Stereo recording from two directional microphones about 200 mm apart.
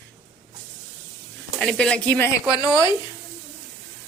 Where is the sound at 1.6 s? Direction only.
5° left (ahead or behind).